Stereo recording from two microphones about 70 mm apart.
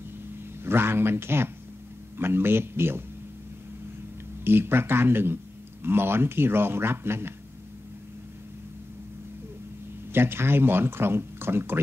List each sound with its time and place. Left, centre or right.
0.7 s speech: right
4.5 s speech: right
10.1 s speech: right